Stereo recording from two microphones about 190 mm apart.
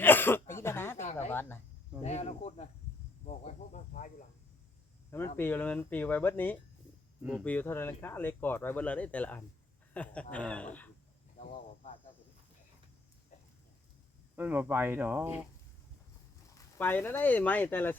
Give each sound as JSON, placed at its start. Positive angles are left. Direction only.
{"t": 0.0, "sound": "throat clearing", "side_deg": 10}
{"t": 1.3, "sound": "speech", "side_deg": 10}
{"t": 2.0, "sound": "speech", "side_deg": 35}
{"t": 3.2, "sound": "cricket", "side_deg": 40}
{"t": 5.4, "sound": "speech", "side_deg": 10}
{"t": 14.3, "sound": "speech", "side_deg": -10}
{"t": 16.7, "sound": "speech", "side_deg": 10}